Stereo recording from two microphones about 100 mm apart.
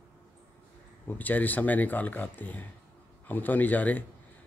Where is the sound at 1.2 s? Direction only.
15° left (ahead or behind).